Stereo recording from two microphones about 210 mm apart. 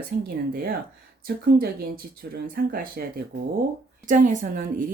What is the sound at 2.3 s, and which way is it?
Speech, 45° right (ahead or behind).